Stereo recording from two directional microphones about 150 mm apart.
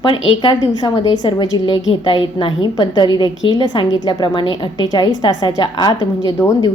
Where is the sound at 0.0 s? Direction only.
35° left (ahead or behind).